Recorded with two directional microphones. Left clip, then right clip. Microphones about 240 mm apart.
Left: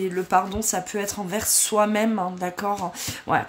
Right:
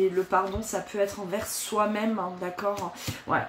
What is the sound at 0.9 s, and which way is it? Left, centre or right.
Speech, left.